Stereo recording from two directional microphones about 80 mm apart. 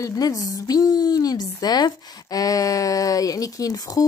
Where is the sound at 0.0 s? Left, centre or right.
Left.